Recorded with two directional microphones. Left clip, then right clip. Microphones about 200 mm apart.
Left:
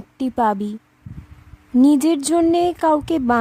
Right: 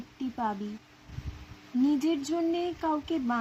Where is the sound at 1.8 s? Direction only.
55° left (ahead or behind).